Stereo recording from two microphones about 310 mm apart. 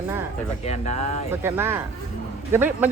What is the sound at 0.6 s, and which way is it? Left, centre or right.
Speech, left.